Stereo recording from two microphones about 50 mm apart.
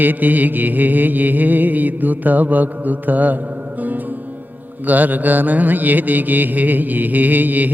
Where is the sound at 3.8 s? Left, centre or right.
Right.